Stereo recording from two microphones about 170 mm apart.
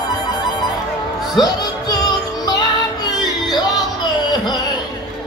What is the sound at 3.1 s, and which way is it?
Music, 25° left (ahead or behind).